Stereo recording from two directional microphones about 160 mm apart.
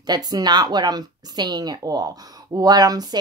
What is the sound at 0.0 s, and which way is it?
Speech, 25° right (ahead or behind).